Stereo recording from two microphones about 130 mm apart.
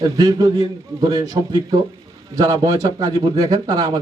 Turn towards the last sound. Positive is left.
turn(degrees=-30)  # may be behind; listen again after turning